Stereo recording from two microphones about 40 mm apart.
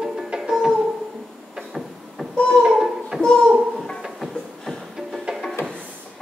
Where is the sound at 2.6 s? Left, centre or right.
Centre.